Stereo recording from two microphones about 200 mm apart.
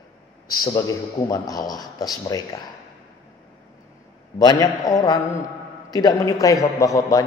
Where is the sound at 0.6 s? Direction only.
20° left (ahead or behind).